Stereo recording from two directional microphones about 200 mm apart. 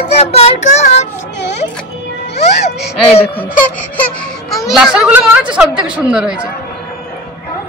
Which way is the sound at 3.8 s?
10° left (ahead or behind).